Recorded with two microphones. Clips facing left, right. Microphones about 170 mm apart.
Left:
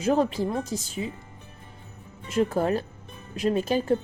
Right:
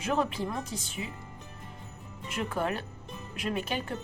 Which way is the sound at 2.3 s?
35° left (ahead or behind).